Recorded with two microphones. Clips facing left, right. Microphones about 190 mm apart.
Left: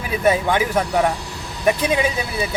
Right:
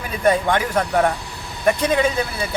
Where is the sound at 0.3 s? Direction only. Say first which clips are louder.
Even; 10° left (ahead or behind).